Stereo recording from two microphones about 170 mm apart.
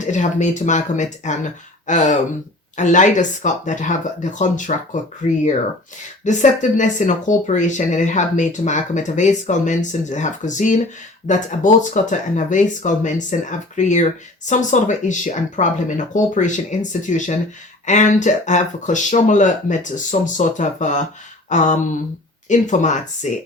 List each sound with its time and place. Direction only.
0.0 s speech: 45° left (ahead or behind)